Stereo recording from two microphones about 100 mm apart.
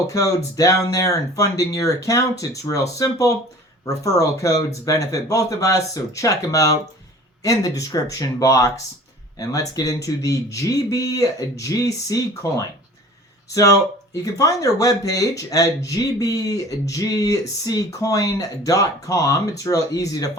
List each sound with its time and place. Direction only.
0.1 s speech: 35° left (ahead or behind)